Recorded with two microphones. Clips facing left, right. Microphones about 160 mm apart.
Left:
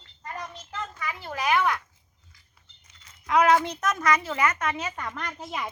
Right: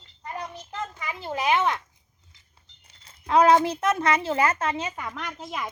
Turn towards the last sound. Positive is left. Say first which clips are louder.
# even
turn(degrees=0)  # may be behind; listen again after turning